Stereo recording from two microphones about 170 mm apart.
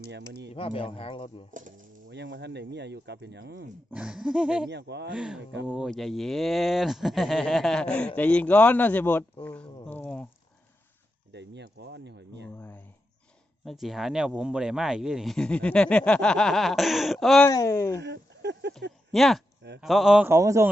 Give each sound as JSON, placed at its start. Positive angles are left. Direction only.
{"t": 0.5, "sound": "speech", "side_deg": 35}
{"t": 1.5, "sound": "speech", "side_deg": -50}
{"t": 2.0, "sound": "speech", "side_deg": -90}
{"t": 3.9, "sound": "speech", "side_deg": -5}
{"t": 4.7, "sound": "speech", "side_deg": -85}
{"t": 5.1, "sound": "speech", "side_deg": -5}
{"t": 11.3, "sound": "speech", "side_deg": -90}
{"t": 12.5, "sound": "speech", "side_deg": 10}
{"t": 13.7, "sound": "speech", "side_deg": 0}
{"t": 17.4, "sound": "speech", "side_deg": 15}
{"t": 18.0, "sound": "a sound", "side_deg": -90}
{"t": 19.1, "sound": "speech", "side_deg": 0}
{"t": 20.2, "sound": "speech", "side_deg": -15}